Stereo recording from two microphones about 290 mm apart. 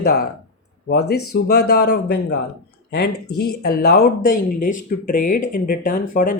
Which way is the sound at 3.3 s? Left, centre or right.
Left.